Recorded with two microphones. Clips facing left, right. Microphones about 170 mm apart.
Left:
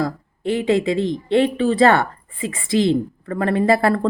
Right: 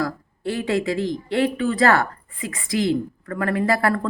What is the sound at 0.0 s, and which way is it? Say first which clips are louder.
Speech: left 3 dB; 20° left (ahead or behind).